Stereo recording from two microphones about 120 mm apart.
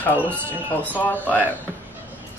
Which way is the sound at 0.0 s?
15° left (ahead or behind).